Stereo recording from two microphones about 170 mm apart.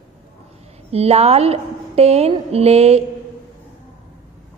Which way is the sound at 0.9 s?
35° right (ahead or behind).